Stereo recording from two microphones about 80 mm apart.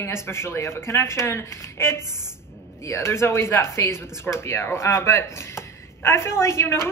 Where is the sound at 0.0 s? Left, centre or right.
Left.